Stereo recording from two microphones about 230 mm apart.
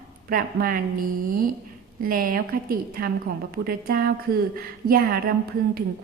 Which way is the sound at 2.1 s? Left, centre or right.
Right.